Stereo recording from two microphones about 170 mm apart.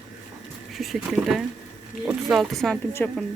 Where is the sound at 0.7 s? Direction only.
Centre (ahead or behind).